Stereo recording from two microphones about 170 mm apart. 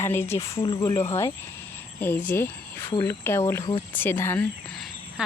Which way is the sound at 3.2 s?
15° left (ahead or behind).